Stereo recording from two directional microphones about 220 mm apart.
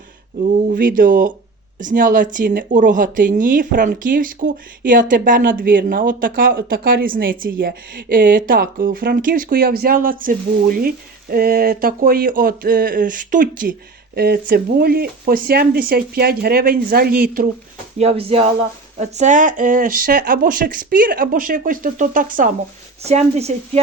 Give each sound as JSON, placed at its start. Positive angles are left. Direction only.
{"t": 0.5, "sound": "speech", "side_deg": -40}
{"t": 17.9, "sound": "speech", "side_deg": -30}